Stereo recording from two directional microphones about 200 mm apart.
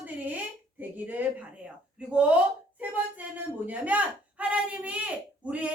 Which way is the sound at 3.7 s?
10° right (ahead or behind).